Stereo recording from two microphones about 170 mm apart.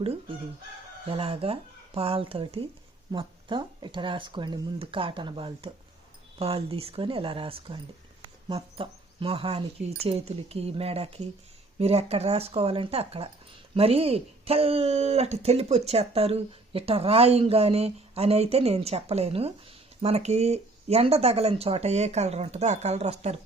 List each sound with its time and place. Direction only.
1.0 s speech: 35° right (ahead or behind)